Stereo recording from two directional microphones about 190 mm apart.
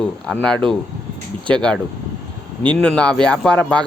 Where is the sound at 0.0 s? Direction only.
5° left (ahead or behind).